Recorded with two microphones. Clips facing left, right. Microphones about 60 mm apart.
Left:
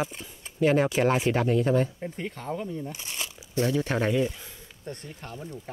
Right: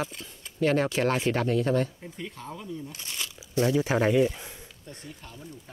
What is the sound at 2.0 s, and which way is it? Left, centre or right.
Speech, left.